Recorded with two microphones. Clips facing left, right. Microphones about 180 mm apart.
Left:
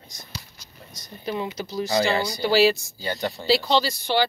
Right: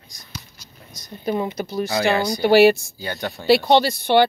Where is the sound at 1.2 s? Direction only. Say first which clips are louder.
Right 5 dB; 50° right (ahead or behind).